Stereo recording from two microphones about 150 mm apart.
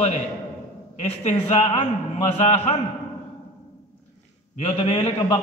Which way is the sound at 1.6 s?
35° left (ahead or behind).